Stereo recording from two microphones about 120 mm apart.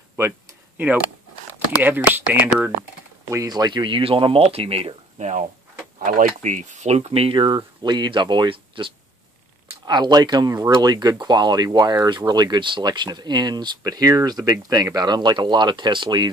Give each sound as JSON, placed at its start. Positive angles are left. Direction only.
{"t": 0.2, "sound": "speech", "side_deg": -20}
{"t": 2.1, "sound": "speech", "side_deg": -15}
{"t": 3.3, "sound": "speech", "side_deg": -30}
{"t": 5.9, "sound": "speech", "side_deg": -90}
{"t": 7.4, "sound": "speech", "side_deg": -35}